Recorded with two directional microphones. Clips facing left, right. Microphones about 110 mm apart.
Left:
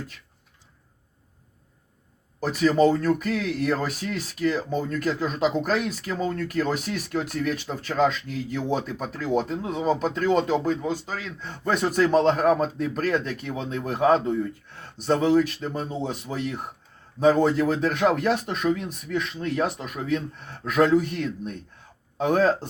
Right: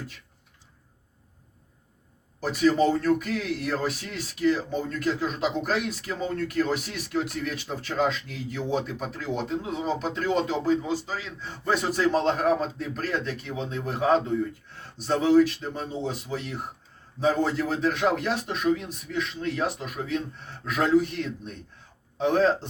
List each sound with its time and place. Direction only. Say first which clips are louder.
2.5 s speech: left 2 dB; 45° left (ahead or behind)